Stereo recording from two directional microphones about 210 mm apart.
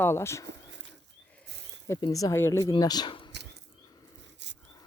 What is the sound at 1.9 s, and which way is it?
Speech, 20° left (ahead or behind).